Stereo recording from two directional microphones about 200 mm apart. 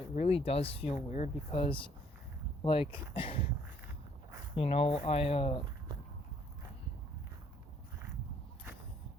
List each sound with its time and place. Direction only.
0.1 s speech: 30° left (ahead or behind)
4.5 s speech: 30° left (ahead or behind)